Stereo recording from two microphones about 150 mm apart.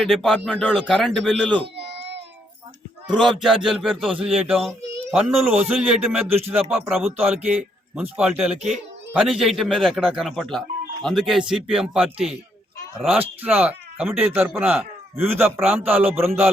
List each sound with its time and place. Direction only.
0.0 s speech: centre (ahead or behind)
1.6 s baby cry: 90° right
3.1 s speech: centre (ahead or behind)